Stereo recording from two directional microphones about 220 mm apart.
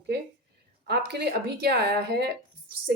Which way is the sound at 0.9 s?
50° right (ahead or behind).